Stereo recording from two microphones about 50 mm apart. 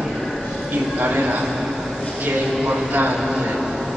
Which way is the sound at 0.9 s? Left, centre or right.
Right.